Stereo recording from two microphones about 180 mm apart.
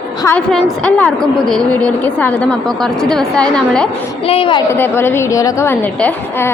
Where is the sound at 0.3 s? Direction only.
5° left (ahead or behind).